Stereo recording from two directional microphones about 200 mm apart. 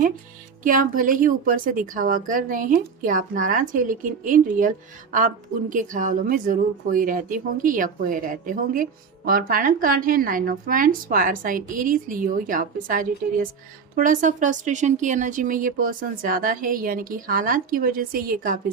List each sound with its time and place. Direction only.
0.6 s a woman's voice: 40° right (ahead or behind)